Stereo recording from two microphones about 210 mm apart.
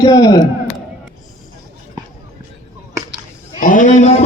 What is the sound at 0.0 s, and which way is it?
Speech, 20° left (ahead or behind).